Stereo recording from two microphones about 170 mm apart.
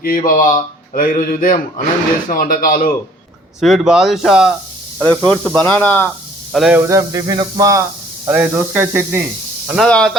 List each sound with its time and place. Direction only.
0.0 s speech: 55° left (ahead or behind)
3.6 s speech: 5° right (ahead or behind)
6.5 s speech: centre (ahead or behind)
6.7 s hiss: 20° right (ahead or behind)
8.3 s speech: 10° right (ahead or behind)
9.6 s speech: centre (ahead or behind)